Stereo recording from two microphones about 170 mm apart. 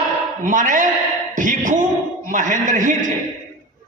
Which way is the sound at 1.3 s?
50° right (ahead or behind).